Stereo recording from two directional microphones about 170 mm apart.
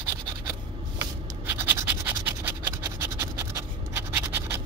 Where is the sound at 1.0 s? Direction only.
10° right (ahead or behind).